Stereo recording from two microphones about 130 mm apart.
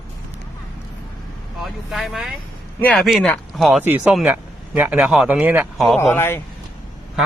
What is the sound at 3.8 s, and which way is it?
Speech, 15° right (ahead or behind).